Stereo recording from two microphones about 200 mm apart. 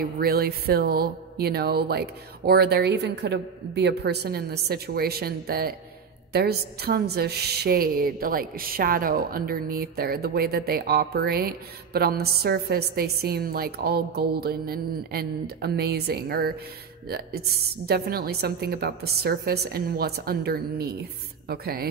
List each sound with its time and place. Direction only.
0.0 s a woman's voice: 50° right (ahead or behind)